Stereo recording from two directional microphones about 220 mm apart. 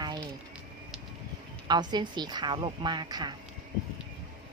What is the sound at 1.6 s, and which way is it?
A woman's voice, 20° right (ahead or behind).